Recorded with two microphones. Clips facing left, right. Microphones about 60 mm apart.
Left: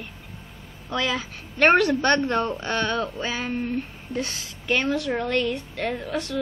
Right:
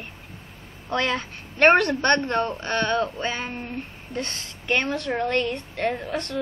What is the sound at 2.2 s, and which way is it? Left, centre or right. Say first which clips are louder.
Speech: left 1 dB; centre.